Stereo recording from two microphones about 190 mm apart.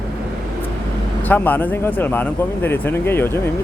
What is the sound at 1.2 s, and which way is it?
Speech, 10° left (ahead or behind).